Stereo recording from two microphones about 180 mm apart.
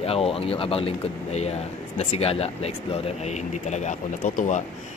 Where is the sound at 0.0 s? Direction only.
35° left (ahead or behind).